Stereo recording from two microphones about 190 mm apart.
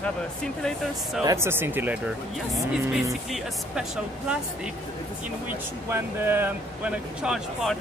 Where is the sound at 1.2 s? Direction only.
15° right (ahead or behind).